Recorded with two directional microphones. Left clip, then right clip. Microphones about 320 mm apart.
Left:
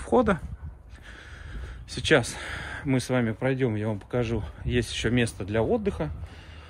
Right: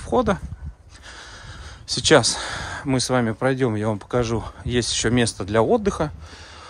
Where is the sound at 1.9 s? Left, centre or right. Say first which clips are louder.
Right 7 dB; centre.